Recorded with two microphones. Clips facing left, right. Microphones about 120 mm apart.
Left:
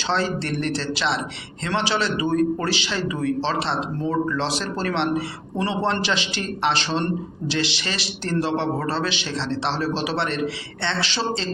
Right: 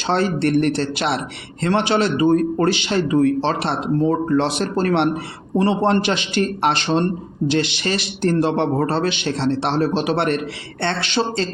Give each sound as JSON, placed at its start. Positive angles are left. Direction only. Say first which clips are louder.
{"t": 0.1, "sound": "a man's voice", "louder": "right 6 dB", "side_deg": -50}